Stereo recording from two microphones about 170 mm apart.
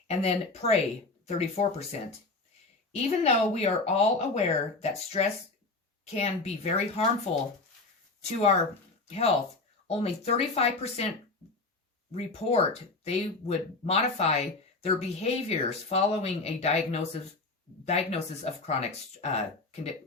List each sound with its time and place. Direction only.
0.1 s speech: 40° left (ahead or behind)
9.0 s speech: 35° left (ahead or behind)
12.1 s speech: 35° left (ahead or behind)